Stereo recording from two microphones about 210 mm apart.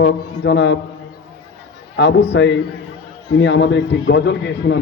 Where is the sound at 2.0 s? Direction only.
55° left (ahead or behind).